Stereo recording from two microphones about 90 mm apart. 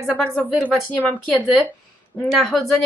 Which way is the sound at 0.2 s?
15° left (ahead or behind).